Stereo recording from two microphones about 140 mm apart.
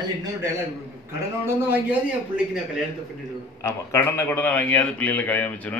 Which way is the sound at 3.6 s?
20° left (ahead or behind).